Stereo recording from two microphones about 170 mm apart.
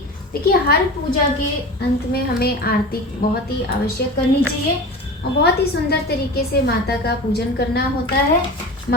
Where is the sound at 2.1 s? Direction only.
65° left (ahead or behind).